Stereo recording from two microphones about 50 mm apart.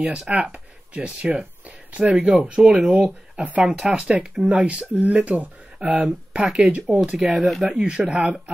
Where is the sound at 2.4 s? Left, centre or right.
Centre.